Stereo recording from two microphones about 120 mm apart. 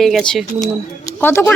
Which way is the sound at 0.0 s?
Centre (ahead or behind).